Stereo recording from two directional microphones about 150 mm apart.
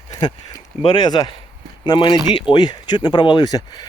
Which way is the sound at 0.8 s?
30° left (ahead or behind).